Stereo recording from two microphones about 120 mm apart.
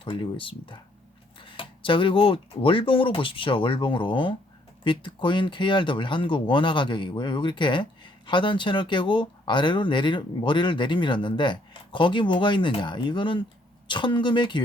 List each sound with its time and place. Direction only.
0.0 s speech: 45° left (ahead or behind)